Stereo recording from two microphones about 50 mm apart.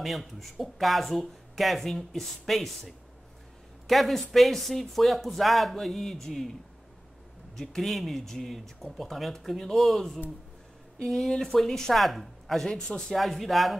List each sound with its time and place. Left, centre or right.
0.0 s speech: centre
7.5 s speech: centre
13.1 s speech: centre